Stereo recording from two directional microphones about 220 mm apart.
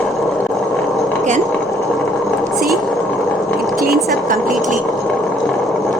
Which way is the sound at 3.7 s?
45° right (ahead or behind).